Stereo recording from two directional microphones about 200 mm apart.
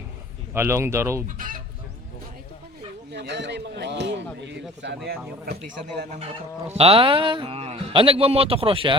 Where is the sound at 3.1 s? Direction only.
60° right (ahead or behind).